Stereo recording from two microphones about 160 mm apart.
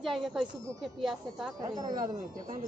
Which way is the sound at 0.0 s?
Centre (ahead or behind).